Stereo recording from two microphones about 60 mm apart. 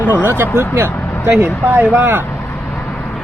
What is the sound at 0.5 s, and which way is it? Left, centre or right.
Speech, right.